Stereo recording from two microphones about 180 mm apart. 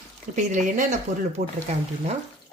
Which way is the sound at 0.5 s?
45° right (ahead or behind).